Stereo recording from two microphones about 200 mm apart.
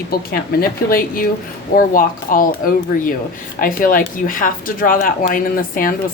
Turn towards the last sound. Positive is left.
turn(degrees=45)  # may be behind; listen again after turning